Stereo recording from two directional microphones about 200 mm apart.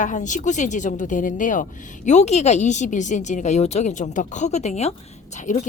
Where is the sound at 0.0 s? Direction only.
40° left (ahead or behind).